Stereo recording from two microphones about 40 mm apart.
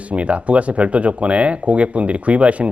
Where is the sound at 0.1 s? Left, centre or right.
Right.